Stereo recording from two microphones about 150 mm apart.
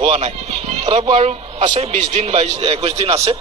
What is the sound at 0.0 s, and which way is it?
A man's voice, 45° right (ahead or behind).